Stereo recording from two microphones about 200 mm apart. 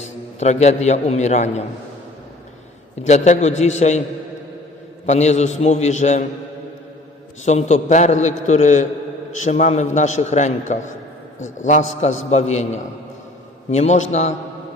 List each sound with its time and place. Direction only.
0.3 s a man's voice: 35° left (ahead or behind)
3.1 s a man's voice: 35° left (ahead or behind)
5.0 s a man's voice: 35° left (ahead or behind)
7.4 s a man's voice: 35° left (ahead or behind)
13.7 s a man's voice: 35° left (ahead or behind)